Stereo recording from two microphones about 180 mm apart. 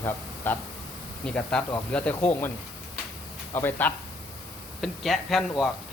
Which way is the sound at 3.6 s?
10° left (ahead or behind).